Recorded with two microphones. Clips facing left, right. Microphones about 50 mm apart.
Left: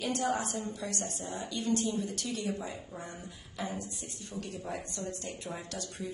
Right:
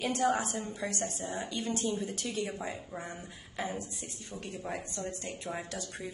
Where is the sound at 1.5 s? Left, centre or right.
Right.